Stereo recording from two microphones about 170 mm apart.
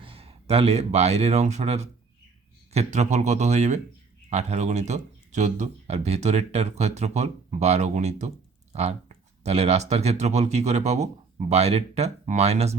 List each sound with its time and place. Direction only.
0.0 s speech: 35° right (ahead or behind)